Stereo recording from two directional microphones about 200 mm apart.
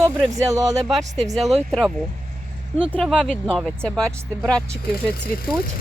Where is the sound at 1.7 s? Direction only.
Centre (ahead or behind).